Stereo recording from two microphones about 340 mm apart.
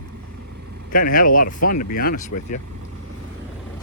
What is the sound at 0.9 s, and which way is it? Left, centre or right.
Speech, left.